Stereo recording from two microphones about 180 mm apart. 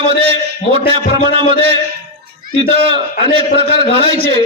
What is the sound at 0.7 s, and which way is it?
A man's voice, 30° right (ahead or behind).